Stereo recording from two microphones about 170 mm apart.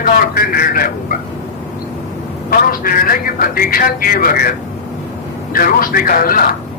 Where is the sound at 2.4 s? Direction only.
60° left (ahead or behind).